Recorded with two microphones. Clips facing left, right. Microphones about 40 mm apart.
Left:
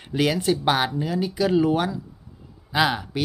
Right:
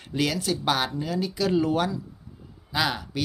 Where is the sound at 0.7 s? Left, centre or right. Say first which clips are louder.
Left 3 dB; centre.